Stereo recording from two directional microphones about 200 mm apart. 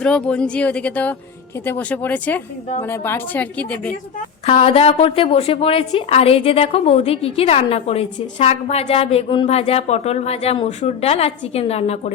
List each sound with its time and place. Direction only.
0.0 s a woman's voice: 5° left (ahead or behind)
4.4 s a woman's voice: 30° left (ahead or behind)